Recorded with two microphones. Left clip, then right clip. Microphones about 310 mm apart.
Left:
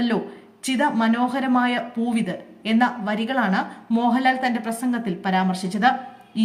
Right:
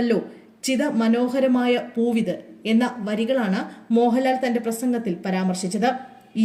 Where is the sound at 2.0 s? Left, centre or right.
Left.